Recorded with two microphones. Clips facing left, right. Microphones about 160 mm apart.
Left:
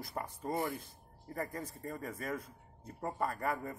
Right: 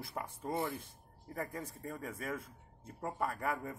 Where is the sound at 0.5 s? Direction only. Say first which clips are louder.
Left 1 dB; 10° left (ahead or behind).